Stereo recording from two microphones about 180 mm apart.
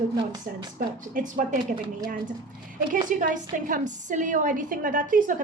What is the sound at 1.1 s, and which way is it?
A woman's voice, 45° right (ahead or behind).